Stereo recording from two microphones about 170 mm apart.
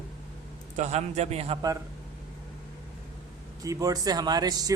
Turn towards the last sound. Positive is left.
turn(degrees=-20)  # may be behind; listen again after turning